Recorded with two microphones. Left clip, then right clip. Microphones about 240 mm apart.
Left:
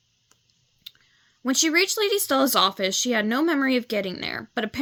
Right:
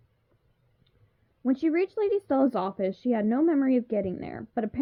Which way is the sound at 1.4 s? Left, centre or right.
Centre.